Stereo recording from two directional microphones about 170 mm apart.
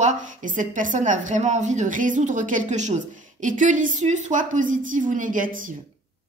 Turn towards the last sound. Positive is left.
turn(degrees=-55)  # may be behind; listen again after turning